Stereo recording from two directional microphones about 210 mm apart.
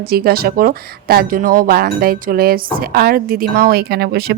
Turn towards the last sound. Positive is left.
turn(degrees=-50)  # may be behind; listen again after turning